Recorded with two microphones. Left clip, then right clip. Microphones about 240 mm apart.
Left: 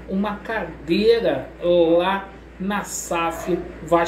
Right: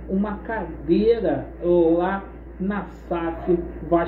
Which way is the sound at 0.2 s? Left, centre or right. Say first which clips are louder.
Left 6 dB; centre.